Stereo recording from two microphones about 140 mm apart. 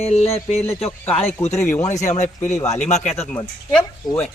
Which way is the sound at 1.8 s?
55° left (ahead or behind).